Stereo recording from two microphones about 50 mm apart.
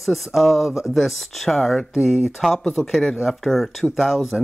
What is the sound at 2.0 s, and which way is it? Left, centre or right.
Speech, centre.